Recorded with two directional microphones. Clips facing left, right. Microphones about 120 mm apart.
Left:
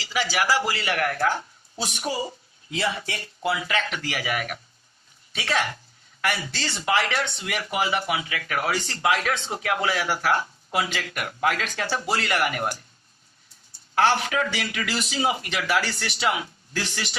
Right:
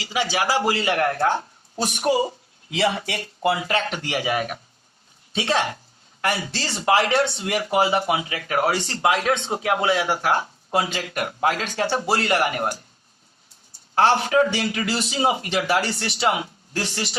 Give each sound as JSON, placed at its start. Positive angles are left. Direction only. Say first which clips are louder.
{"t": 0.0, "sound": "speech", "louder": "right 2 dB", "side_deg": -20}
{"t": 1.8, "sound": "speech", "louder": "right 7 dB", "side_deg": -55}
{"t": 2.6, "sound": "speech", "louder": "right 5 dB", "side_deg": -90}
{"t": 3.6, "sound": "speech", "louder": "right 3 dB", "side_deg": -35}
{"t": 4.0, "sound": "speech", "louder": "right 4 dB", "side_deg": -25}
{"t": 13.9, "sound": "speech", "louder": "right 4 dB", "side_deg": -30}